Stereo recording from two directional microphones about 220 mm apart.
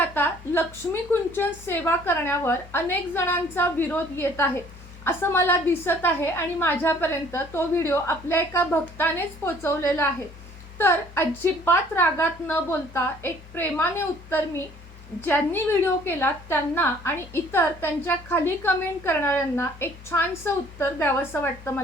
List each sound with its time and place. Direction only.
0.1 s a woman's voice: 10° left (ahead or behind)